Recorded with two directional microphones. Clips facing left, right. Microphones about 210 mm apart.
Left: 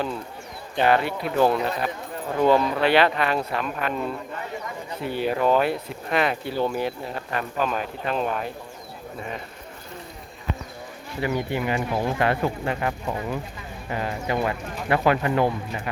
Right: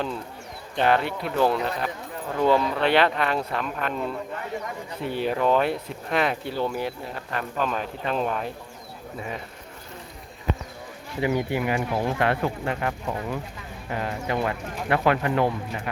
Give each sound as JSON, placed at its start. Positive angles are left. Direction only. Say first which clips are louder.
{"t": 0.8, "sound": "speech", "louder": "left 1 dB", "side_deg": 5}
{"t": 5.0, "sound": "speech", "louder": "left 1 dB", "side_deg": 5}
{"t": 6.5, "sound": "speech", "louder": "left 2 dB", "side_deg": 20}
{"t": 7.3, "sound": "speech", "louder": "left 1 dB", "side_deg": 5}
{"t": 11.2, "sound": "speech", "louder": "right 1 dB", "side_deg": -15}